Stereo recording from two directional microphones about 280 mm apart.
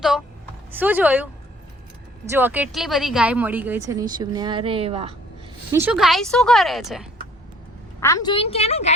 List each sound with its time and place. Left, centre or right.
0.7 s a woman's voice: centre
2.3 s a woman's voice: centre
5.7 s speech: centre
8.0 s a woman's voice: centre